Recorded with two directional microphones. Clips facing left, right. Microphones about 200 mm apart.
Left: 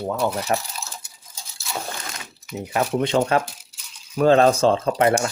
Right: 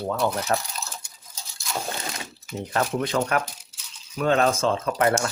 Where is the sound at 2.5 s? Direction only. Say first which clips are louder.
Left 2 dB; 10° left (ahead or behind).